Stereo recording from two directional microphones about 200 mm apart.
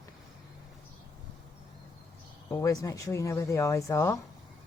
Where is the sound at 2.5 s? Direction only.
15° left (ahead or behind).